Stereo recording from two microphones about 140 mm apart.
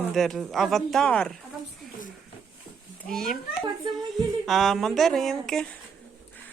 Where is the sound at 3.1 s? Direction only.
5° left (ahead or behind).